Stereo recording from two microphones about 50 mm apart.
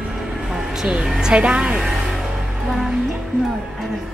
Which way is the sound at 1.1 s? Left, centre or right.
Centre.